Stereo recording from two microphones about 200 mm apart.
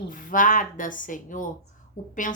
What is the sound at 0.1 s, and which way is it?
A woman's voice, 45° left (ahead or behind).